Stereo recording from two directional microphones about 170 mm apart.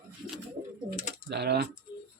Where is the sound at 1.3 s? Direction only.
75° right (ahead or behind).